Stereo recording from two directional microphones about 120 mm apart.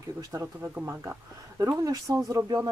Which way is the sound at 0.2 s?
25° right (ahead or behind).